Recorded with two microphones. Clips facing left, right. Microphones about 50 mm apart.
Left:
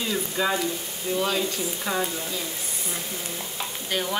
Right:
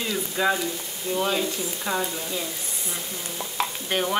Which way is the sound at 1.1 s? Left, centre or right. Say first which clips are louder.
Even; centre.